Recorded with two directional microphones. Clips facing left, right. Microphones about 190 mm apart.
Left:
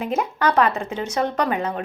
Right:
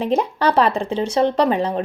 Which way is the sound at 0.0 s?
30° right (ahead or behind).